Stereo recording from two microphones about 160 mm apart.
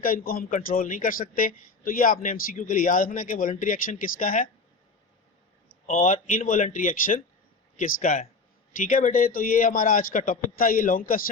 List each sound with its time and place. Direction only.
0.0 s a man's voice: 65° left (ahead or behind)
5.8 s a man's voice: 55° left (ahead or behind)